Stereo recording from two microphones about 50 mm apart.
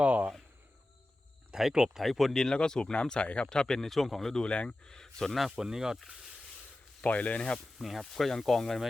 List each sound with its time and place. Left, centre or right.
0.0 s a sound: right
1.5 s speech: centre
2.0 s speech: centre
2.4 s speech: centre
3.5 s speech: centre
4.4 s speech: left
4.9 s speech: centre
5.5 s speech: centre
7.0 s speech: left
7.8 s speech: centre